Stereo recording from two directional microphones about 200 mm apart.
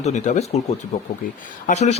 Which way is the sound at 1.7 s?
35° left (ahead or behind).